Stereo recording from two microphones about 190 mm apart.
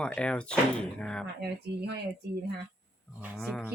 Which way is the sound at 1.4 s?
60° right (ahead or behind).